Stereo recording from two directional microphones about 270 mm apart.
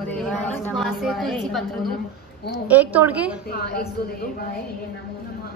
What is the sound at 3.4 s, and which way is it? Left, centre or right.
Speech, left.